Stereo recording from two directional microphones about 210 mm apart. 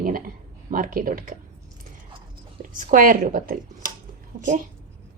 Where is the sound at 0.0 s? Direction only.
40° right (ahead or behind).